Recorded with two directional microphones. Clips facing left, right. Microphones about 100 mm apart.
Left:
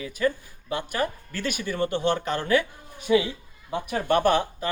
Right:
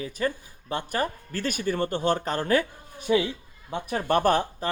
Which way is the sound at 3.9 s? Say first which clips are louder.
Left 1 dB; 40° right (ahead or behind).